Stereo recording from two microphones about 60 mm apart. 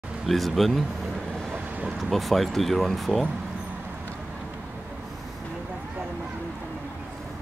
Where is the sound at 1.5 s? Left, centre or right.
Centre.